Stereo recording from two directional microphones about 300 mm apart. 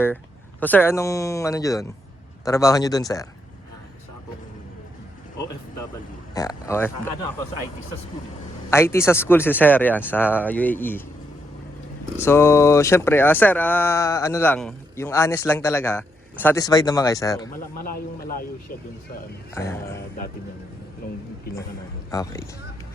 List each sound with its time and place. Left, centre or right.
0.6 s speech: centre
6.3 s speech: centre
8.7 s speech: centre
12.1 s speech: centre
17.7 s a man's voice: left
19.5 s speech: centre
21.5 s a man's voice: left
22.1 s speech: centre